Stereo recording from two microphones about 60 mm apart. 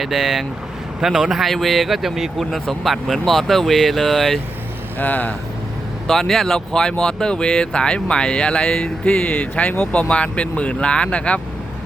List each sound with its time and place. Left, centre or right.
0.0 s speech: centre
4.9 s speech: left
6.1 s speech: centre